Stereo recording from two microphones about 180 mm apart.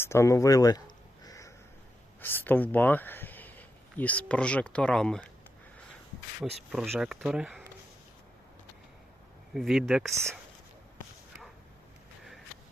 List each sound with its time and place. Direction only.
0.0 s speech: 15° left (ahead or behind)
1.2 s a sound: 20° left (ahead or behind)
2.2 s speech: 10° left (ahead or behind)
6.4 s speech: centre (ahead or behind)
9.6 s speech: centre (ahead or behind)